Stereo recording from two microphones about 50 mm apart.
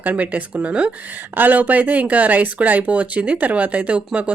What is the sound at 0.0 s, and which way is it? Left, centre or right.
A woman's voice, right.